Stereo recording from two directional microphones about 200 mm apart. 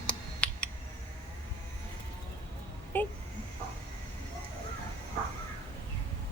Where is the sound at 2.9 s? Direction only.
10° left (ahead or behind).